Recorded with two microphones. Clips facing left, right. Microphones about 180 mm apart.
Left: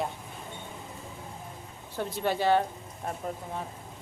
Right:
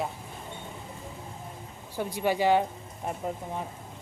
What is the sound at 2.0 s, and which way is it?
Speech, 10° right (ahead or behind).